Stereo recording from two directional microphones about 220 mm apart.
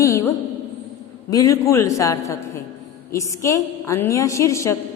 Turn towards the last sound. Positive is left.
turn(degrees=15)  # may be behind; listen again after turning